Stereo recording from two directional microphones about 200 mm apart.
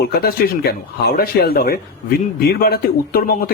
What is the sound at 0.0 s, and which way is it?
Speech, 50° left (ahead or behind).